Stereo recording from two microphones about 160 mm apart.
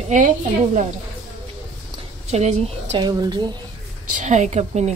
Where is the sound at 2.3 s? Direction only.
45° right (ahead or behind).